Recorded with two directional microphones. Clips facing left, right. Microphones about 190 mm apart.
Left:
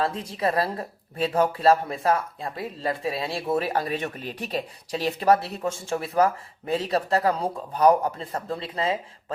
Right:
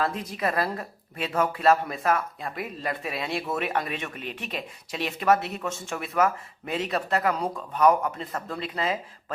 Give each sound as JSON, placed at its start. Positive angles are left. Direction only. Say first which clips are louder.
{"t": 0.0, "sound": "speech", "louder": "left 2 dB", "side_deg": 30}